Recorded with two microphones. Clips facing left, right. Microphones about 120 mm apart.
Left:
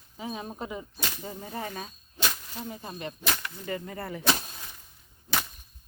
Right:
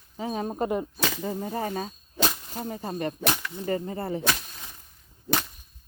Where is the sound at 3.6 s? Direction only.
30° right (ahead or behind).